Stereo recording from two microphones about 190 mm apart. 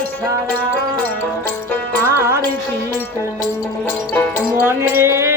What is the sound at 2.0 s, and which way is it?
Music, 10° right (ahead or behind).